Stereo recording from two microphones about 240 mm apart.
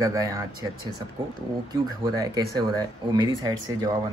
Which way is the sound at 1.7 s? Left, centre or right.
Centre.